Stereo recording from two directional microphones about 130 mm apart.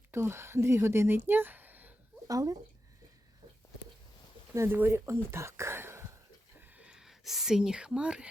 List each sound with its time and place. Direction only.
0.1 s speech: 20° right (ahead or behind)
2.2 s speech: 25° right (ahead or behind)
4.5 s speech: 20° right (ahead or behind)
6.6 s a sound: 10° right (ahead or behind)